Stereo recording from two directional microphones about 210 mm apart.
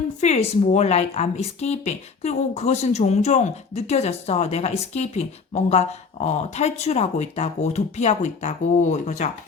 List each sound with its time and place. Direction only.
0.2 s speech: 30° left (ahead or behind)